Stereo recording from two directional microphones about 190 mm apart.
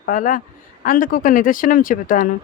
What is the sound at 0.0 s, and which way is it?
A woman's voice, 45° left (ahead or behind).